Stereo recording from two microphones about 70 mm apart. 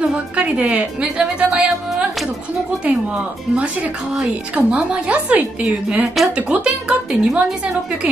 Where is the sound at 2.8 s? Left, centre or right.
Centre.